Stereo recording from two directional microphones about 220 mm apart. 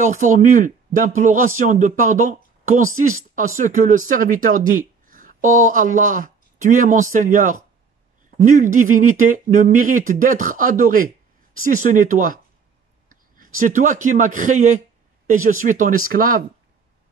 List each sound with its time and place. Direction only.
0.0 s speech: 35° right (ahead or behind)